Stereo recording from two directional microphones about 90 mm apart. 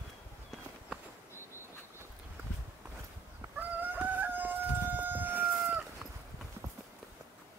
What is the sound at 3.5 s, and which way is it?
Chicken, 20° right (ahead or behind).